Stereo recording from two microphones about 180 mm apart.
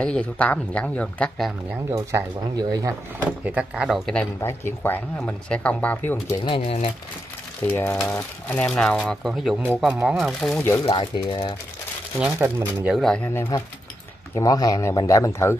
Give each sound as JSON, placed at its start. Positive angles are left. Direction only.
{"t": 0.0, "sound": "speech", "side_deg": 5}
{"t": 1.9, "sound": "speech", "side_deg": -15}
{"t": 3.2, "sound": "speech", "side_deg": -10}
{"t": 6.4, "sound": "speech", "side_deg": 30}
{"t": 7.6, "sound": "speech", "side_deg": 10}
{"t": 10.9, "sound": "speech", "side_deg": 25}
{"t": 12.2, "sound": "speech", "side_deg": -10}